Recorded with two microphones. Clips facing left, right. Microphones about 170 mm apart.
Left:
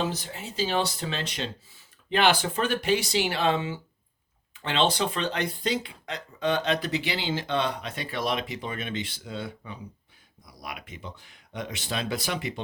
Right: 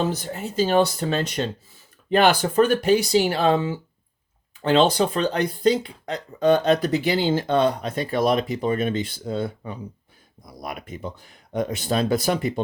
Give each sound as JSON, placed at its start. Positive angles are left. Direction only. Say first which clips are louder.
{"t": 0.0, "sound": "speech", "louder": "right 5 dB", "side_deg": -50}